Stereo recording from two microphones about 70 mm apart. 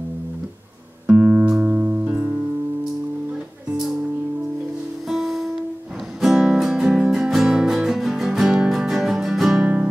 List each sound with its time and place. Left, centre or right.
1.0 s music: centre
5.0 s music: centre